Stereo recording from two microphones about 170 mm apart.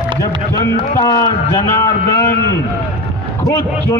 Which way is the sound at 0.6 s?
15° left (ahead or behind).